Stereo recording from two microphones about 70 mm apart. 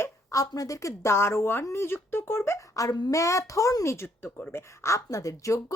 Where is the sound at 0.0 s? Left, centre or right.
Left.